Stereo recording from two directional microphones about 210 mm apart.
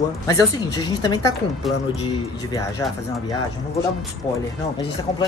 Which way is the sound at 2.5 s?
15° left (ahead or behind).